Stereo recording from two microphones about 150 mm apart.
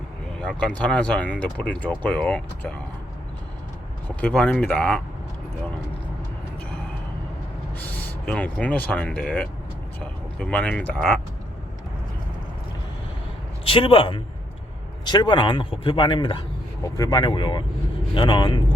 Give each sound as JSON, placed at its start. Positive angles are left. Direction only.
{"t": 0.3, "sound": "speech", "side_deg": 5}
{"t": 4.1, "sound": "speech", "side_deg": 10}
{"t": 7.8, "sound": "speech", "side_deg": 10}
{"t": 13.7, "sound": "a man's voice", "side_deg": 35}